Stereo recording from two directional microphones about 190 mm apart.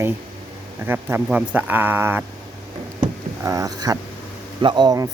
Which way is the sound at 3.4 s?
20° right (ahead or behind).